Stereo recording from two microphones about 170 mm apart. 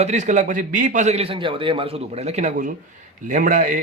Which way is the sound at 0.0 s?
45° right (ahead or behind).